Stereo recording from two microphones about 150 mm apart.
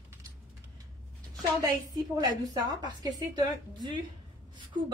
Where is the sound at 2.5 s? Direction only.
25° right (ahead or behind).